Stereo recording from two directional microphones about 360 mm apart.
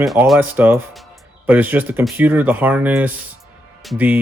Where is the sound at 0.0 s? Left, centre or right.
Centre.